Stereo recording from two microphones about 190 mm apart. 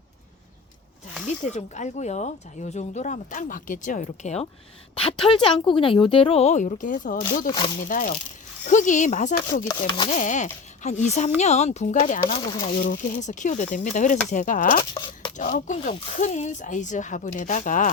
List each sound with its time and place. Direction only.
1.5 s a woman's voice: 40° left (ahead or behind)
9.6 s a woman's voice: 25° left (ahead or behind)
10.1 s speech: 40° left (ahead or behind)